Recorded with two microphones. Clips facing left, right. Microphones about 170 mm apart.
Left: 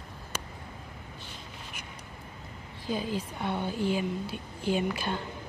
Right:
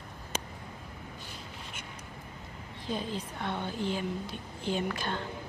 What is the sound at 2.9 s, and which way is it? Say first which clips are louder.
A woman's voice: left 3 dB; 5° left (ahead or behind).